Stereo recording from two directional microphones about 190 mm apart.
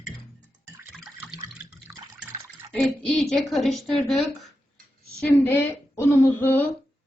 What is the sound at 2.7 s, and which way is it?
Speech, centre (ahead or behind).